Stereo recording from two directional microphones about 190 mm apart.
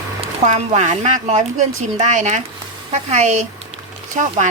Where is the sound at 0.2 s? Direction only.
35° right (ahead or behind).